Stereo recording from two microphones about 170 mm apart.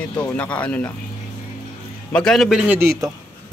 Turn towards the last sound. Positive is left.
turn(degrees=-15)  # may be behind; listen again after turning